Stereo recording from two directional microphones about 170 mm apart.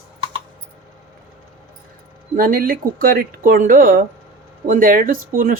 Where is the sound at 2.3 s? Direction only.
60° right (ahead or behind).